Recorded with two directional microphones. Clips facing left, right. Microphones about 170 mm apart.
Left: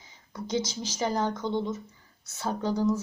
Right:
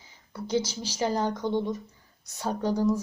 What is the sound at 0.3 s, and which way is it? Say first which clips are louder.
Speech: right 2 dB; 10° right (ahead or behind).